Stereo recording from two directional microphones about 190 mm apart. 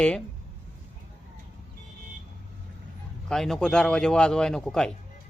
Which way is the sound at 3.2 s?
Centre (ahead or behind).